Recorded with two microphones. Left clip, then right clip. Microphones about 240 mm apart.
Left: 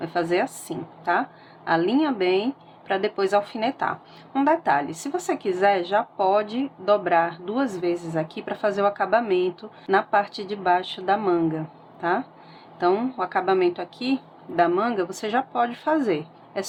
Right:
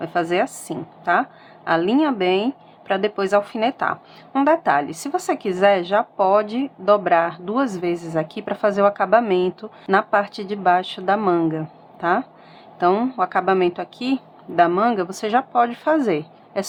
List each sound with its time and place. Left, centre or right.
0.0 s speech: centre